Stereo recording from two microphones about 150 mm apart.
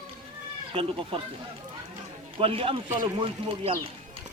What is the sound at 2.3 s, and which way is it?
Speech, 40° right (ahead or behind).